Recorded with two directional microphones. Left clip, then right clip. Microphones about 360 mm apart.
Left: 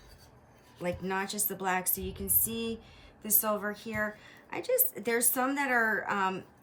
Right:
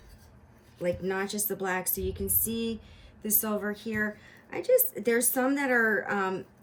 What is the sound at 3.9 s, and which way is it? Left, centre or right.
A woman's voice, centre.